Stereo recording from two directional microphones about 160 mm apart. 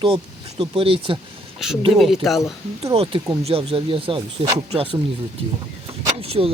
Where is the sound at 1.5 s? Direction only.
Centre (ahead or behind).